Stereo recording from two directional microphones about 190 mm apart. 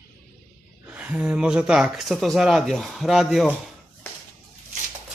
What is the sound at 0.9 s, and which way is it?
Speech, 5° right (ahead or behind).